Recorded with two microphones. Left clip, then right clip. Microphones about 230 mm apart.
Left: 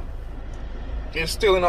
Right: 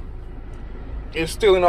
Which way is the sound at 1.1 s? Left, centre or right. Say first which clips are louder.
Right 3 dB; centre.